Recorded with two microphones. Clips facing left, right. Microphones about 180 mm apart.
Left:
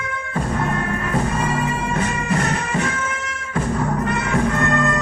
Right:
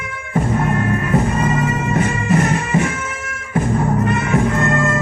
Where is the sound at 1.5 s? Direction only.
20° right (ahead or behind).